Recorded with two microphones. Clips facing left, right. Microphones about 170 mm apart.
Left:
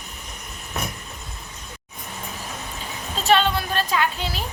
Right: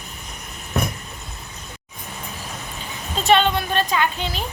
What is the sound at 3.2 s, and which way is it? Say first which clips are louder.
A woman's voice: right 2 dB; centre (ahead or behind).